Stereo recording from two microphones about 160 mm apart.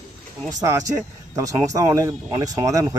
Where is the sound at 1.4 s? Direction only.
20° right (ahead or behind).